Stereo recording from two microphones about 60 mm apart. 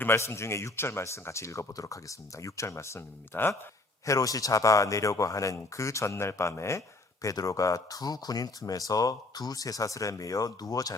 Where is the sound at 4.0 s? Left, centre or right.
Left.